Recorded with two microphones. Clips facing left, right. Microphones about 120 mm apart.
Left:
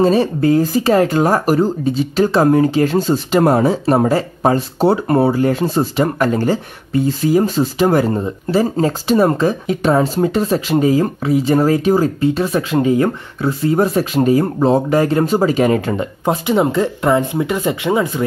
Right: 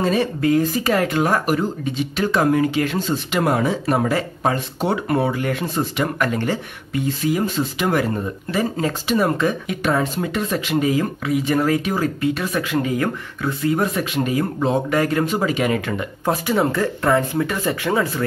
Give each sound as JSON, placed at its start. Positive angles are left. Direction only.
{"t": 0.0, "sound": "speech", "side_deg": 30}
{"t": 16.3, "sound": "speech", "side_deg": 20}